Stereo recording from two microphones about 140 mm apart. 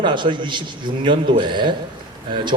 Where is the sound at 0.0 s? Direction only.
35° right (ahead or behind).